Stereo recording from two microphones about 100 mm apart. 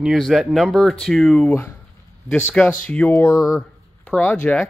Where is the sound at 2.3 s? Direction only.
15° left (ahead or behind).